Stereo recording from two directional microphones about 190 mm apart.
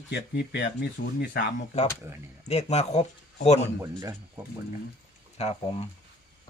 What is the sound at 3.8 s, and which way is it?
Speech, 20° right (ahead or behind).